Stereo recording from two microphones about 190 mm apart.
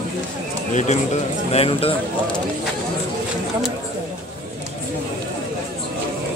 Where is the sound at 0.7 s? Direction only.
40° left (ahead or behind).